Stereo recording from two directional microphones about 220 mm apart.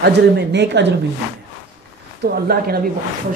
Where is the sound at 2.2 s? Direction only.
45° right (ahead or behind).